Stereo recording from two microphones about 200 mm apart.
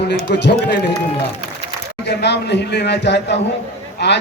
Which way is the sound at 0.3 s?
60° left (ahead or behind).